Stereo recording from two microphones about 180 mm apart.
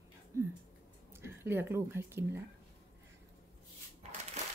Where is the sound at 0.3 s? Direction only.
15° right (ahead or behind).